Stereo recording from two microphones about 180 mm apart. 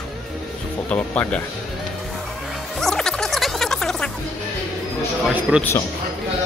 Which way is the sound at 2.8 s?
5° left (ahead or behind).